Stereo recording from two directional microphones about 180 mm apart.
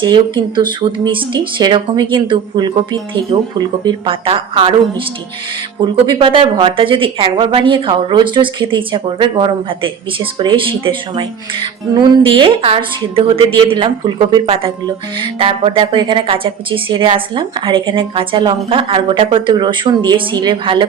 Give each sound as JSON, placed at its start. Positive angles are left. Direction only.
{"t": 0.0, "sound": "a woman's voice", "side_deg": -25}
{"t": 3.3, "sound": "a woman's voice", "side_deg": -35}
{"t": 5.8, "sound": "a woman's voice", "side_deg": -25}